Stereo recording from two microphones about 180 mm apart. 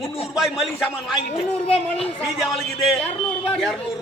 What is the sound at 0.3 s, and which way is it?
Speech, centre (ahead or behind).